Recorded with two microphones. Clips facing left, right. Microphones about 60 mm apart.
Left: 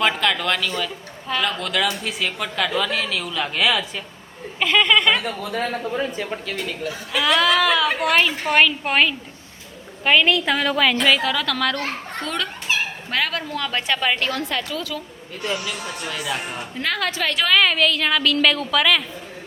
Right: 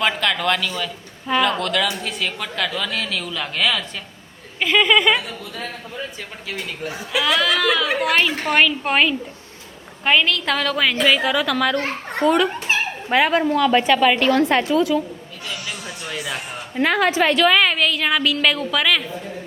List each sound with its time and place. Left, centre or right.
0.0 s a woman's voice: centre
5.2 s a woman's voice: left
7.1 s a woman's voice: centre
10.4 s a woman's voice: centre; by 13.4 s right
13.8 s a woman's voice: centre
14.3 s a woman's voice: right
16.1 s speech: centre
16.7 s a woman's voice: right
17.4 s a woman's voice: centre